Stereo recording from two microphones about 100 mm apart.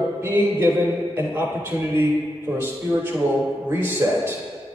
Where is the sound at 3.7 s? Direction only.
20° right (ahead or behind).